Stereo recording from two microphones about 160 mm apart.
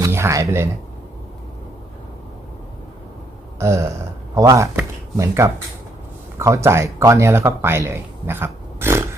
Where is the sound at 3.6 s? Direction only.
20° right (ahead or behind).